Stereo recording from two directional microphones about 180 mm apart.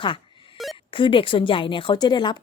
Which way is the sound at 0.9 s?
30° left (ahead or behind).